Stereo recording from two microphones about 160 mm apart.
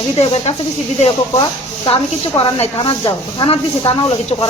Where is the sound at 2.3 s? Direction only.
25° left (ahead or behind).